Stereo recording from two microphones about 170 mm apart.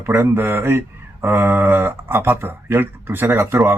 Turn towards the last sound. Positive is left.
turn(degrees=-15)  # may be behind; listen again after turning